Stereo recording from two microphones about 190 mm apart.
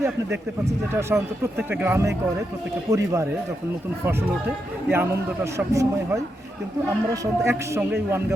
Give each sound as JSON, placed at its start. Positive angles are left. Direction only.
{"t": 0.0, "sound": "a man's voice", "side_deg": -15}